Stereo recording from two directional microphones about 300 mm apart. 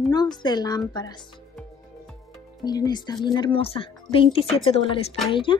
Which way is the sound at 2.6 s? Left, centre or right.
Centre.